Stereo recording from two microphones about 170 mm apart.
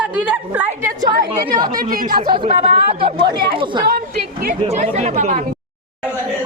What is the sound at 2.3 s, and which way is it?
Speech, 35° right (ahead or behind).